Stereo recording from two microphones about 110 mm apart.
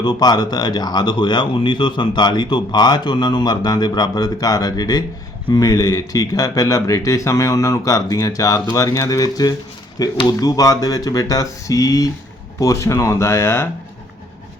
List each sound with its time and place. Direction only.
0.0 s speech: 40° left (ahead or behind); by 13.7 s 25° left (ahead or behind)